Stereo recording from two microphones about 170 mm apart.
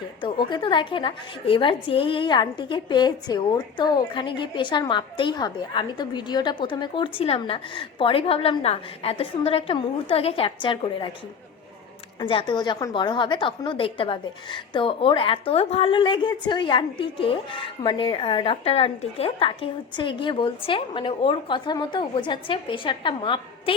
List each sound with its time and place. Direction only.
0.2 s a woman's voice: 25° left (ahead or behind)
12.2 s a woman's voice: 30° left (ahead or behind)